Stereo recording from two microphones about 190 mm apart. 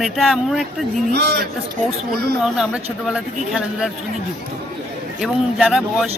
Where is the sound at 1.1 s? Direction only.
55° right (ahead or behind).